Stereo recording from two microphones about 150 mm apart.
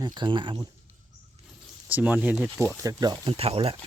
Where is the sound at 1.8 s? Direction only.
10° right (ahead or behind).